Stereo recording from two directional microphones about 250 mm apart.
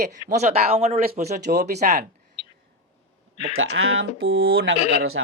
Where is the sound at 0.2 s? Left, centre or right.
Left.